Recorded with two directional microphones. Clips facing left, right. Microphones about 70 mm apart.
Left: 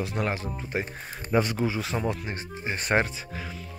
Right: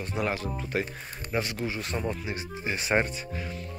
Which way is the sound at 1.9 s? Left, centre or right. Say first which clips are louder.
Left 3 dB; left.